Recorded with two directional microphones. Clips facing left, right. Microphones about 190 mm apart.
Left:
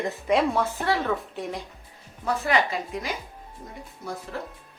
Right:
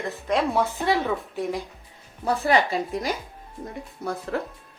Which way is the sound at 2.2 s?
35° right (ahead or behind).